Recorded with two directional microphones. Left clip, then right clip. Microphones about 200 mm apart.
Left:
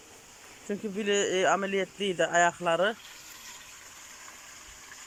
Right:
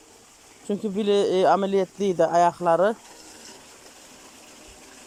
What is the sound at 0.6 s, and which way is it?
Speech, 15° right (ahead or behind).